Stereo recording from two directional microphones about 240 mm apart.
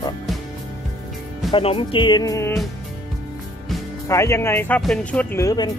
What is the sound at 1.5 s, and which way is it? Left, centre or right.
Speech, left.